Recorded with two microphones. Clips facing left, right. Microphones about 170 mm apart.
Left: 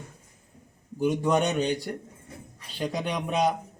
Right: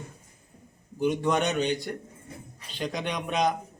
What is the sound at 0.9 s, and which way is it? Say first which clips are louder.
A man's voice: left 1 dB; 10° left (ahead or behind).